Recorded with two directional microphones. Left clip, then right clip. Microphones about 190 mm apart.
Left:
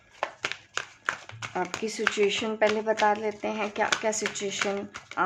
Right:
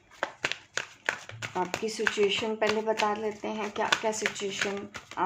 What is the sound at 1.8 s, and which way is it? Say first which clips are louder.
A woman's voice: left 2 dB; 35° left (ahead or behind).